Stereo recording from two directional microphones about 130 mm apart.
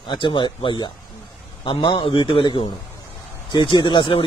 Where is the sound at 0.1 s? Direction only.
40° left (ahead or behind).